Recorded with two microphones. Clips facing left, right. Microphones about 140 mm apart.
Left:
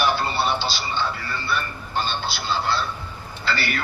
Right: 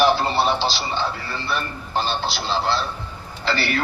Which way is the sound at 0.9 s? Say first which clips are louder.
Right 1 dB; 35° right (ahead or behind).